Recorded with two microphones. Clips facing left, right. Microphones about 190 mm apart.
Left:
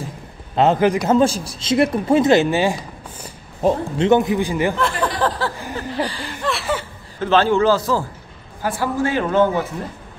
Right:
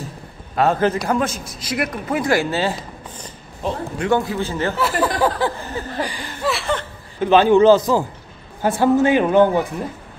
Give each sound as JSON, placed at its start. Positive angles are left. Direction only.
{"t": 0.6, "sound": "a man's voice", "side_deg": 15}
{"t": 3.6, "sound": "a man's voice", "side_deg": 45}
{"t": 4.0, "sound": "speech", "side_deg": 20}
{"t": 4.7, "sound": "a man's voice", "side_deg": -5}
{"t": 6.4, "sound": "speech", "side_deg": 0}
{"t": 7.2, "sound": "a man's voice", "side_deg": -15}